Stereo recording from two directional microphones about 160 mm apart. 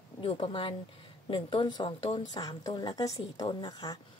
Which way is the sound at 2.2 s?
25° left (ahead or behind).